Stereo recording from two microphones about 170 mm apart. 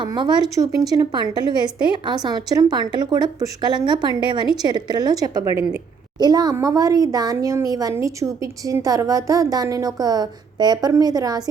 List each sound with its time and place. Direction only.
0.0 s speech: 25° right (ahead or behind)